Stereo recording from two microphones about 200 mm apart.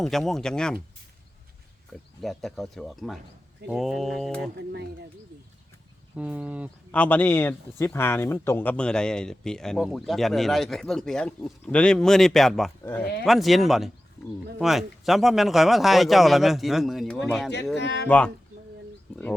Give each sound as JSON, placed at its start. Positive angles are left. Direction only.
{"t": 0.0, "sound": "speech", "side_deg": 0}
{"t": 1.9, "sound": "speech", "side_deg": 0}
{"t": 6.1, "sound": "speech", "side_deg": -5}
{"t": 6.9, "sound": "speech", "side_deg": 5}
{"t": 13.2, "sound": "speech", "side_deg": 0}
{"t": 17.7, "sound": "speech", "side_deg": 60}